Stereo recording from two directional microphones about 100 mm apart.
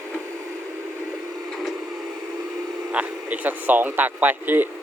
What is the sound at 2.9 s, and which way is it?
Speech, 15° right (ahead or behind).